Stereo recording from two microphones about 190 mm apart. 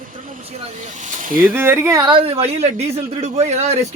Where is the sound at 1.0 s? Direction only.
45° right (ahead or behind).